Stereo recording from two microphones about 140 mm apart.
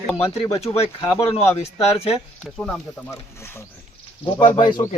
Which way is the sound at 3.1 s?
15° left (ahead or behind).